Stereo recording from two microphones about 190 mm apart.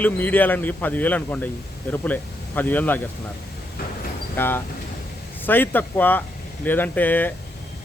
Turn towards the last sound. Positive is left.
turn(degrees=10)  # may be behind; listen again after turning